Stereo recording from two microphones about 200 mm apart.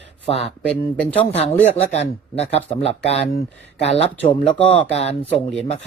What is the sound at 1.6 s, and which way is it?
Speech, 30° left (ahead or behind).